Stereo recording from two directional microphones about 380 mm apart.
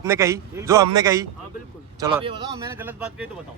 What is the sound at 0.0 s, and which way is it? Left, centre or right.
A man's voice, centre.